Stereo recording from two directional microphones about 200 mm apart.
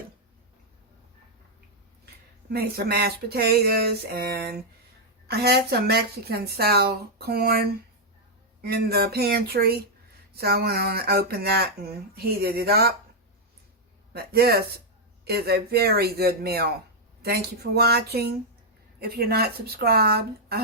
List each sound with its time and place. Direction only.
2.5 s speech: 50° right (ahead or behind)
14.1 s speech: 50° right (ahead or behind)